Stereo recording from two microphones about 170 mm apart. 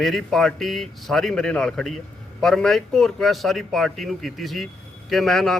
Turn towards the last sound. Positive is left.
turn(degrees=0)  # may be behind; listen again after turning